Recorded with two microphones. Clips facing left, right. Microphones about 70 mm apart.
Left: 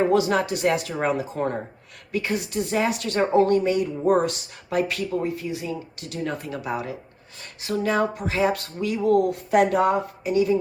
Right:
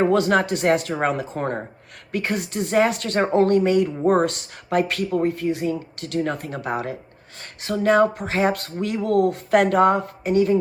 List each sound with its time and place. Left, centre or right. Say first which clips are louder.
0.1 s speech: right 2 dB; right